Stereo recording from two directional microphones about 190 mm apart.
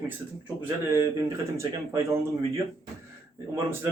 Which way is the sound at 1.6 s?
15° right (ahead or behind).